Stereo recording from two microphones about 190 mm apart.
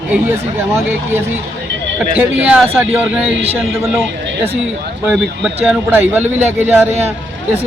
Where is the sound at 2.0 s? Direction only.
5° right (ahead or behind).